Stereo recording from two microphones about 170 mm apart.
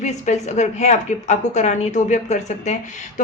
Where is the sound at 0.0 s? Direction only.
45° left (ahead or behind).